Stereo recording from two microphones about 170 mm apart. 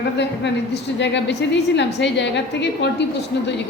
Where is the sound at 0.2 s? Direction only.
90° left.